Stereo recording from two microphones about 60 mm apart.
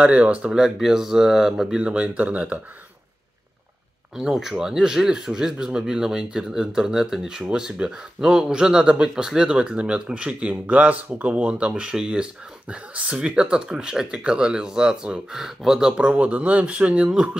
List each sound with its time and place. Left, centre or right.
0.0 s speech: right
0.4 s speech: centre
1.8 s speech: centre
4.2 s speech: centre